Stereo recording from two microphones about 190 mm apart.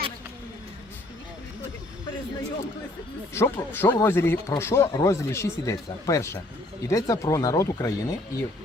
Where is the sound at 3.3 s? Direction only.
10° left (ahead or behind).